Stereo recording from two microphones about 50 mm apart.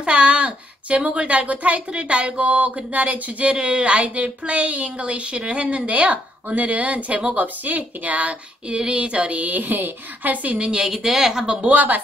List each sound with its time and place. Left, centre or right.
0.0 s a child's voice: right
10.6 s speech: centre
11.6 s speech: right